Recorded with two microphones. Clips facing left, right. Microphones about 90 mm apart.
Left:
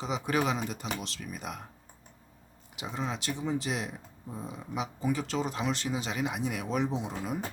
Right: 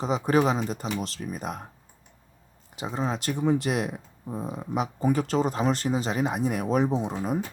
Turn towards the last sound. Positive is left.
turn(degrees=-40)  # may be behind; listen again after turning